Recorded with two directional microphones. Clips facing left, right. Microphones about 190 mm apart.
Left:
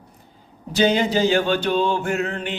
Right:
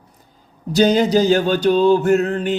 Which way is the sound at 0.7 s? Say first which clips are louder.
Right 5 dB; 40° right (ahead or behind).